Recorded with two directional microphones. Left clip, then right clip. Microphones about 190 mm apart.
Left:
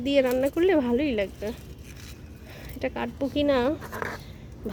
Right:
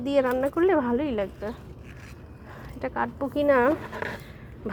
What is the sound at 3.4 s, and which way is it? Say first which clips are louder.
Speech: right 3 dB; 10° left (ahead or behind).